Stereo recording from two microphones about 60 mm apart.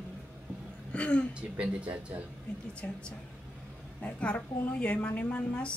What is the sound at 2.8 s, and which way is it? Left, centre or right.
Speech, left.